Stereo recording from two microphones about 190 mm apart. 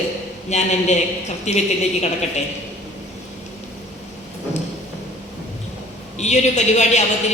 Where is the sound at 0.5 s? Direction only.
35° left (ahead or behind).